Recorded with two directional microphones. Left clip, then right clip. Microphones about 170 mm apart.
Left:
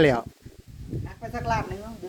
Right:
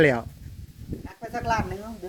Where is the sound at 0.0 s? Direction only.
20° left (ahead or behind).